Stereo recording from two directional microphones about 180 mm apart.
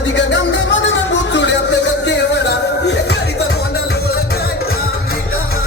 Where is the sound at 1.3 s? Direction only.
80° left.